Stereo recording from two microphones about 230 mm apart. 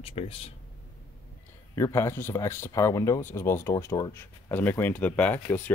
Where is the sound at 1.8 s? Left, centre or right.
Centre.